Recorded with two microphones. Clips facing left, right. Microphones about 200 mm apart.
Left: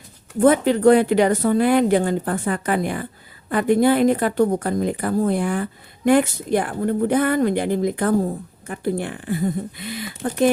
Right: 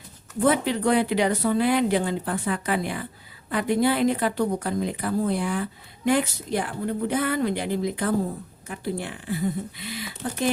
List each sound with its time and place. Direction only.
0.3 s speech: 50° left (ahead or behind)